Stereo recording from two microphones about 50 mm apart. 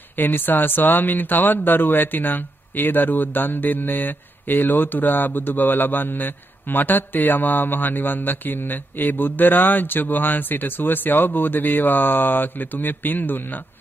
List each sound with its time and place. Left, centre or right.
0.2 s speech: left